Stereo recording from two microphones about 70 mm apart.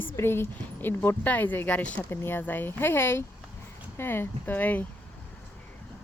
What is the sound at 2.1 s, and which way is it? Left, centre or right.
Speech, left.